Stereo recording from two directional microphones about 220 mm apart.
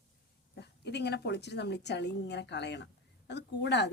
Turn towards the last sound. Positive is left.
turn(degrees=50)  # may be behind; listen again after turning